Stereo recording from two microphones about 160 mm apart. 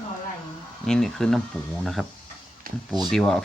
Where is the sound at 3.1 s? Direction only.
5° left (ahead or behind).